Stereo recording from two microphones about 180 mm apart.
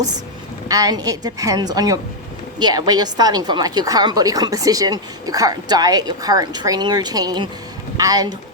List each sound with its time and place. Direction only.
0.7 s a woman's voice: 20° right (ahead or behind)